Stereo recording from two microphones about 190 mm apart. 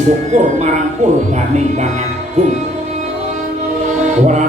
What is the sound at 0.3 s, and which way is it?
Speech, 40° right (ahead or behind).